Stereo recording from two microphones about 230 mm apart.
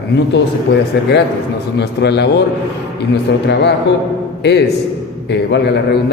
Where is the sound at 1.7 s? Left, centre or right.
Left.